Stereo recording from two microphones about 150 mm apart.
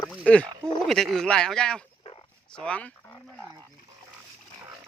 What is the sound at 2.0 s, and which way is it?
Dog, 35° left (ahead or behind).